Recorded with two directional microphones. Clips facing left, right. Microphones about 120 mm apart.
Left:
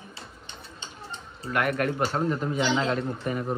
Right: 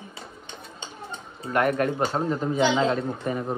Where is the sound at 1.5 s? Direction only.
35° right (ahead or behind).